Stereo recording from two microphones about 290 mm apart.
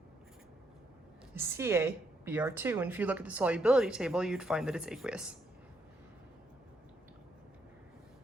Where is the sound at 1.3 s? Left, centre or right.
Centre.